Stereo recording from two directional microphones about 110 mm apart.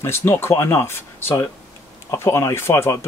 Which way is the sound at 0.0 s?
20° left (ahead or behind).